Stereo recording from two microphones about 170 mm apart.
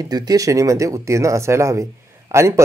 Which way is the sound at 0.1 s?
20° right (ahead or behind).